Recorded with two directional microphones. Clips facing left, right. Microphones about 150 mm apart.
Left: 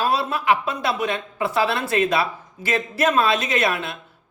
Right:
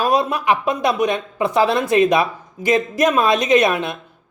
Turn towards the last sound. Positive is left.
turn(degrees=-20)  # may be behind; listen again after turning